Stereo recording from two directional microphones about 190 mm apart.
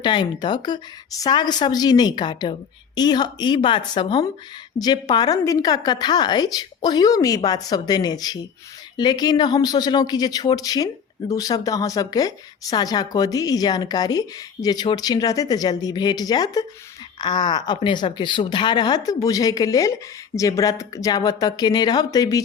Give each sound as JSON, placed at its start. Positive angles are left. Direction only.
{"t": 0.0, "sound": "a woman's voice", "side_deg": 25}